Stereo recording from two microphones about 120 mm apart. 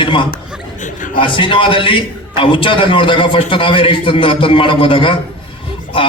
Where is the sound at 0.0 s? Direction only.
45° left (ahead or behind).